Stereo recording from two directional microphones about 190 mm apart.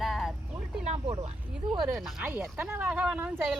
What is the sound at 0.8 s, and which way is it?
Speech, 35° right (ahead or behind).